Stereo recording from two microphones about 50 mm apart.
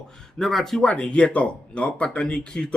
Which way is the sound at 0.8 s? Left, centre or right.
Left.